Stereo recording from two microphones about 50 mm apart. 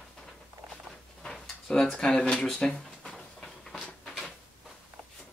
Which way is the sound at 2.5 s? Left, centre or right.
Centre.